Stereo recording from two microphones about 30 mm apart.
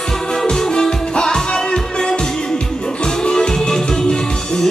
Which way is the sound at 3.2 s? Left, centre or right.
Left.